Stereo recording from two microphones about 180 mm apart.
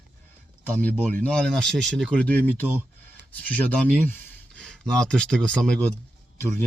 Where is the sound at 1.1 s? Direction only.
5° left (ahead or behind).